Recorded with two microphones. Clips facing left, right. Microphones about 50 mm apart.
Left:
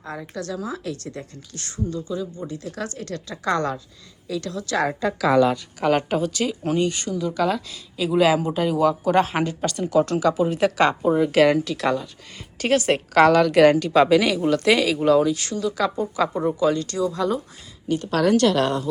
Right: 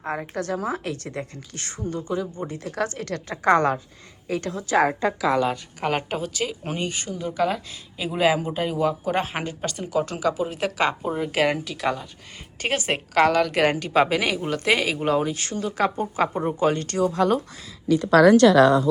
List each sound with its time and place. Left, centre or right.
0.0 s speech: right
0.5 s speech: right
2.3 s speech: right
2.6 s speech: right
4.7 s a woman's voice: centre
13.1 s a woman's voice: centre; by 17.3 s right